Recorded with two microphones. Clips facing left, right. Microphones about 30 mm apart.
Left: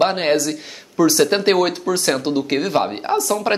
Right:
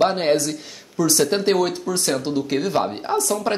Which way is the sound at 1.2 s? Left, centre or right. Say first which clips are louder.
Left 3 dB; left.